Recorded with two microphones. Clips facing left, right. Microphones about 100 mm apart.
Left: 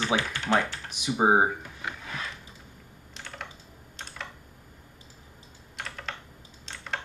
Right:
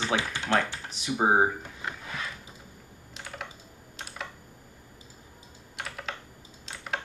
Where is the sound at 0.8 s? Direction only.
15° left (ahead or behind).